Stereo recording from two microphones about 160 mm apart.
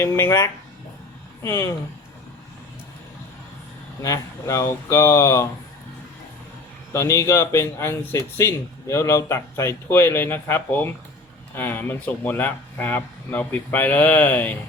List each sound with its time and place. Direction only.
0.0 s speech: 15° left (ahead or behind)
4.0 s speech: 20° left (ahead or behind)
6.9 s speech: 15° left (ahead or behind)